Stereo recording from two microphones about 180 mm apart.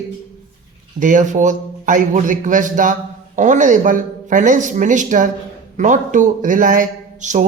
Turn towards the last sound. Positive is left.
turn(degrees=-40)  # may be behind; listen again after turning